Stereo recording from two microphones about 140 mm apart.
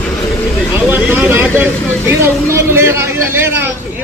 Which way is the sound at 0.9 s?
5° right (ahead or behind).